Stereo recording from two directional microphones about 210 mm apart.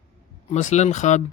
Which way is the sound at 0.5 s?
35° left (ahead or behind).